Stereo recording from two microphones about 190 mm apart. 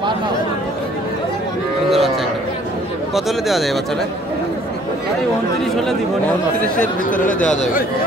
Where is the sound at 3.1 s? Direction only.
Centre (ahead or behind).